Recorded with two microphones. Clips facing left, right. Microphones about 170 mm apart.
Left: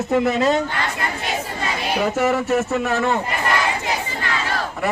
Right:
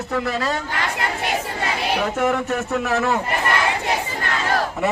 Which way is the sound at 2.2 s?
5° left (ahead or behind).